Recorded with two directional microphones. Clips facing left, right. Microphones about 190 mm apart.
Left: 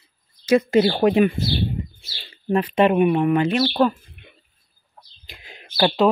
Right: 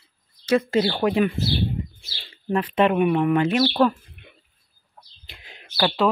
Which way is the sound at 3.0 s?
5° left (ahead or behind).